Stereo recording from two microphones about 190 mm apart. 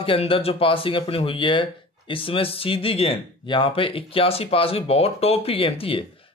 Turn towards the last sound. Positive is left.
turn(degrees=30)  # may be behind; listen again after turning